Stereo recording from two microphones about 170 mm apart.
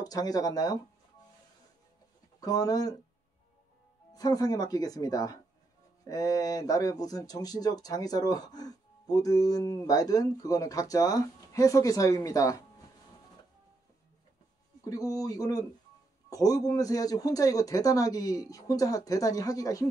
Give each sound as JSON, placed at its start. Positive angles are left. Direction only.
{"t": 0.0, "sound": "speech", "side_deg": 20}
{"t": 2.4, "sound": "speech", "side_deg": 20}
{"t": 4.1, "sound": "speech", "side_deg": 20}
{"t": 14.9, "sound": "speech", "side_deg": 20}